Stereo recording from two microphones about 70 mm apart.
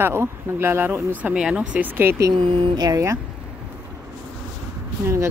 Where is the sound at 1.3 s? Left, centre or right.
Centre.